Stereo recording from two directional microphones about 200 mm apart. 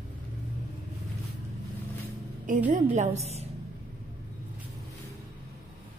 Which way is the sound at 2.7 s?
35° right (ahead or behind).